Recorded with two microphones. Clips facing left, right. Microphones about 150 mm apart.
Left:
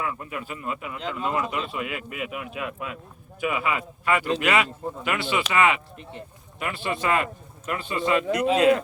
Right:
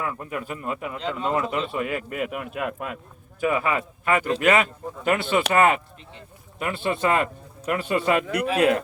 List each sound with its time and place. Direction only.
0.0 s speech: 45° right (ahead or behind)